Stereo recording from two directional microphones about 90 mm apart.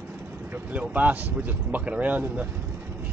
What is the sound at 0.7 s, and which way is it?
Speech, 15° right (ahead or behind).